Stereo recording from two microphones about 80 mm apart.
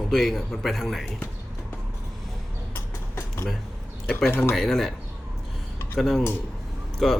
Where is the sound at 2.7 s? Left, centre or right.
Left.